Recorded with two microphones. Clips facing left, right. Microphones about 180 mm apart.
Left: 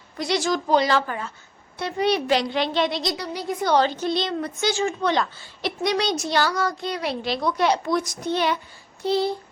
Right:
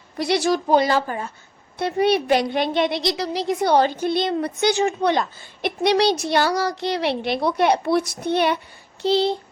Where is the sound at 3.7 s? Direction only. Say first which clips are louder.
Right 1 dB; 10° right (ahead or behind).